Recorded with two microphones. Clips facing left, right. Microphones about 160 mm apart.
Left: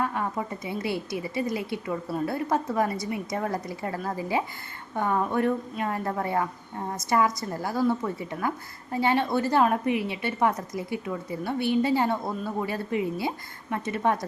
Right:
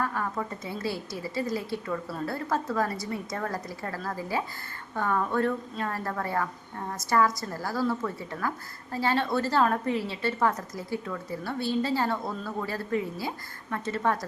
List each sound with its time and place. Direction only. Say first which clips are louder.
0.0 s a woman's voice: left 2 dB; 20° left (ahead or behind)